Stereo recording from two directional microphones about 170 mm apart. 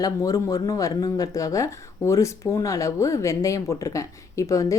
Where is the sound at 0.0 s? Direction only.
20° left (ahead or behind).